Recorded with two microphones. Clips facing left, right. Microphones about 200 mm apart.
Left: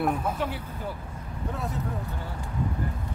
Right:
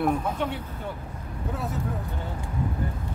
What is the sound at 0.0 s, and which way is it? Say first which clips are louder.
Speech: right 2 dB; centre (ahead or behind).